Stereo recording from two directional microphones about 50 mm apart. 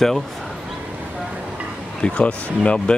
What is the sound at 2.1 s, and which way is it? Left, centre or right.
Speech, left.